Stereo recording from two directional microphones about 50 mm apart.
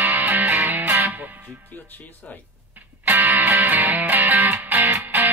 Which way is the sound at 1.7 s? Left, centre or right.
Left.